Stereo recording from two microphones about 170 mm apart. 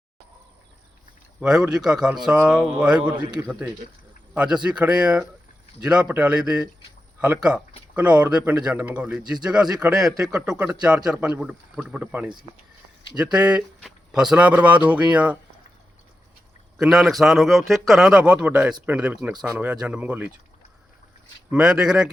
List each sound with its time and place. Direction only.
1.4 s speech: 5° right (ahead or behind)
16.7 s speech: centre (ahead or behind)
21.5 s speech: 5° right (ahead or behind)